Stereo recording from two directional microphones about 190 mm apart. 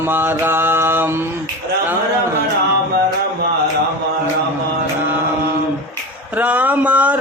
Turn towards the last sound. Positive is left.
turn(degrees=-10)  # may be behind; listen again after turning